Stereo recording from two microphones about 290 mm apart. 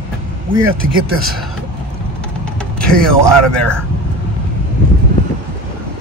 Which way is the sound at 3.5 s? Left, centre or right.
Centre.